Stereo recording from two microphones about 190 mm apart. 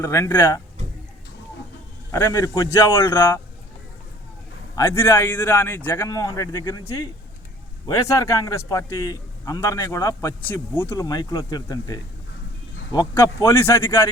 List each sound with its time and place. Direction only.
0.0 s a man's voice: 15° left (ahead or behind)
2.1 s a man's voice: 20° left (ahead or behind)
4.7 s a man's voice: 15° left (ahead or behind)